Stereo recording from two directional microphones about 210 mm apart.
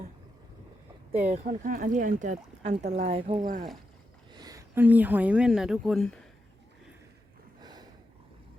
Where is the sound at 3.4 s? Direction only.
40° right (ahead or behind).